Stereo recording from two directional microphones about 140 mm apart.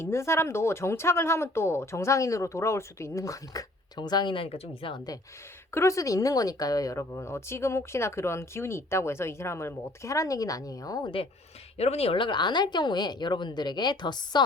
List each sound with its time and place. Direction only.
0.0 s speech: 20° left (ahead or behind); by 4.7 s 45° left (ahead or behind)
5.7 s speech: 20° left (ahead or behind)
11.8 s speech: 45° left (ahead or behind); by 14.4 s 30° left (ahead or behind)